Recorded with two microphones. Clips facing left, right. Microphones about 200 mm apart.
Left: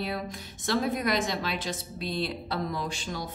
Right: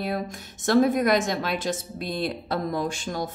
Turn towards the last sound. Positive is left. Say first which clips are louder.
# right 6 dB
turn(degrees=-50)  # may be behind; listen again after turning